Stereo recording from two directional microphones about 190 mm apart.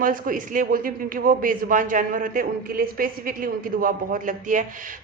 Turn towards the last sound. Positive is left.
turn(degrees=-45)  # may be behind; listen again after turning